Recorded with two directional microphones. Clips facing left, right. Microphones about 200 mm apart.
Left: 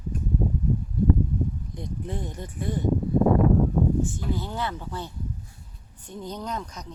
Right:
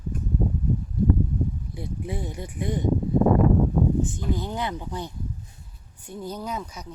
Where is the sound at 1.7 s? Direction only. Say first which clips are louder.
Right 1 dB; 10° right (ahead or behind).